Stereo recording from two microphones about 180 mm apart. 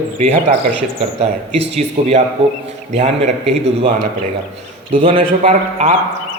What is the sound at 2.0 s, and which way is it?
Speech, 40° right (ahead or behind).